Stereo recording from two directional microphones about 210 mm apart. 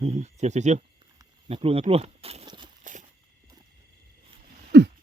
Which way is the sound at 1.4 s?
30° right (ahead or behind).